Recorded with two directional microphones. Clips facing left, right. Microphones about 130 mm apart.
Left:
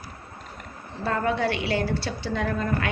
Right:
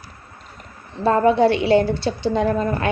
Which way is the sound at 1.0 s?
30° right (ahead or behind).